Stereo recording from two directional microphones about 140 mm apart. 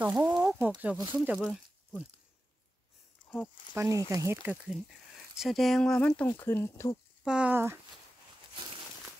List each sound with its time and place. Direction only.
0.0 s speech: 10° right (ahead or behind)
0.4 s a sound: 20° right (ahead or behind)
0.7 s speech: 10° right (ahead or behind)
1.4 s a sound: 5° left (ahead or behind)
3.7 s speech: 20° right (ahead or behind)
5.4 s speech: centre (ahead or behind); by 7.0 s 20° left (ahead or behind)
7.2 s speech: 10° right (ahead or behind)